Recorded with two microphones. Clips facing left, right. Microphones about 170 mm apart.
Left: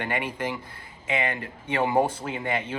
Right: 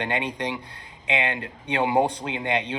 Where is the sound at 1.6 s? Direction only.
15° right (ahead or behind).